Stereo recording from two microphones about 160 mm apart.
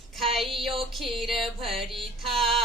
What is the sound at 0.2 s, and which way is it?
Mantra, centre (ahead or behind).